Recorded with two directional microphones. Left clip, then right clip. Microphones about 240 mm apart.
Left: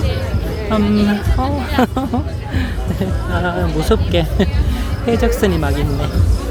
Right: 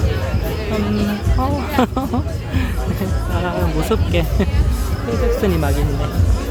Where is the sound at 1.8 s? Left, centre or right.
Centre.